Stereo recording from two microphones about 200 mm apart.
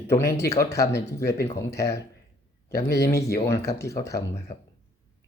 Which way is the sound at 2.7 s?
55° left (ahead or behind).